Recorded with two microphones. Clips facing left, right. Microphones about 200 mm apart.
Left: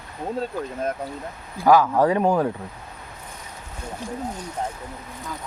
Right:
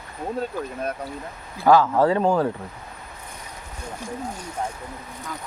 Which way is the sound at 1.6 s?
10° left (ahead or behind).